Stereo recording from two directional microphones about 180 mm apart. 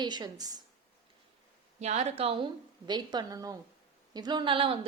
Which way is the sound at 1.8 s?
40° right (ahead or behind).